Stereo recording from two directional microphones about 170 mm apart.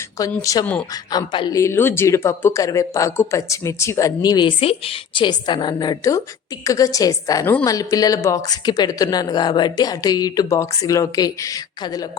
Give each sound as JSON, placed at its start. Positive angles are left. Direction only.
{"t": 0.6, "sound": "speech", "side_deg": 10}
{"t": 1.1, "sound": "speech", "side_deg": 25}